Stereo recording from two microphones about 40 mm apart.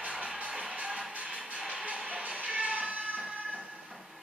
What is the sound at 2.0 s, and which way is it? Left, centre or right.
Music, right.